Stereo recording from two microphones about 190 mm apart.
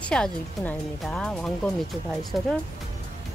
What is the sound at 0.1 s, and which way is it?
Speech, 5° left (ahead or behind).